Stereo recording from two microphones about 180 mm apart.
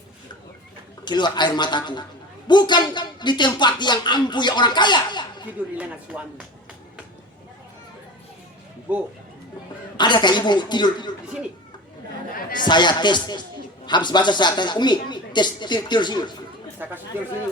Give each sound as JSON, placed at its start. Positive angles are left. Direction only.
{"t": 1.0, "sound": "speech", "side_deg": 25}
{"t": 5.7, "sound": "speech", "side_deg": -10}
{"t": 8.9, "sound": "speech", "side_deg": -10}
{"t": 10.0, "sound": "speech", "side_deg": 25}
{"t": 12.6, "sound": "speech", "side_deg": 25}
{"t": 16.8, "sound": "speech", "side_deg": -10}